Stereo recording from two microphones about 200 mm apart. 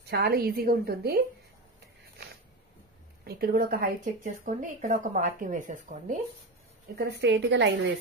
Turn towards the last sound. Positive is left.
turn(degrees=-65)  # may be behind; listen again after turning